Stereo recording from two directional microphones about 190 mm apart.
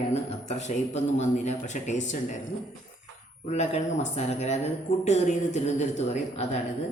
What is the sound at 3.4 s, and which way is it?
Speech, 35° left (ahead or behind).